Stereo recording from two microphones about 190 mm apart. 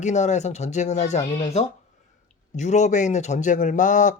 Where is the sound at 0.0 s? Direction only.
40° left (ahead or behind).